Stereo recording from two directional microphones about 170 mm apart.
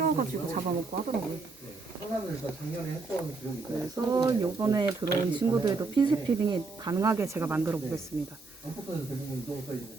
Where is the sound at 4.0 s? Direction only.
20° right (ahead or behind).